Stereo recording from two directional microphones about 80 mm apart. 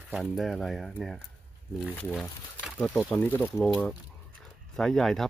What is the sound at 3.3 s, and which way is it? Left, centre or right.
Speech, left.